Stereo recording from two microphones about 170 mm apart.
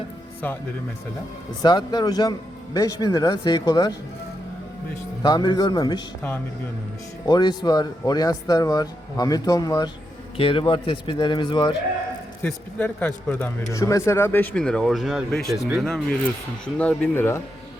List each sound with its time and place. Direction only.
0.4 s speech: 10° left (ahead or behind)
1.6 s speech: 25° left (ahead or behind)
5.2 s speech: 25° left (ahead or behind)
7.3 s speech: 25° left (ahead or behind)
12.4 s speech: 10° left (ahead or behind)
13.7 s speech: 20° left (ahead or behind)